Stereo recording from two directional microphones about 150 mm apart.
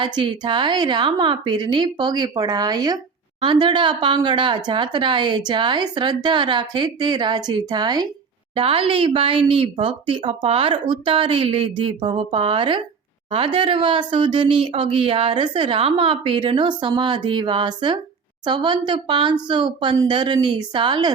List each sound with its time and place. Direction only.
0.0 s a woman's voice: 30° right (ahead or behind)